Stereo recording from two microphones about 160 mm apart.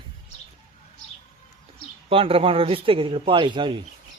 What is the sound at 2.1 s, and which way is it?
Speech, 35° right (ahead or behind).